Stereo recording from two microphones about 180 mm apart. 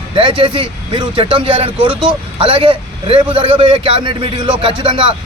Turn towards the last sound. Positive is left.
turn(degrees=-30)  # may be behind; listen again after turning